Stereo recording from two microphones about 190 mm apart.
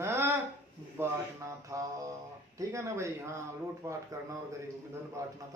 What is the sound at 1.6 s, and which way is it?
Speech, 15° right (ahead or behind).